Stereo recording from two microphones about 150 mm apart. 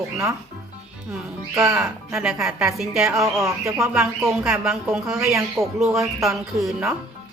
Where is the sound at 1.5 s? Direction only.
20° right (ahead or behind).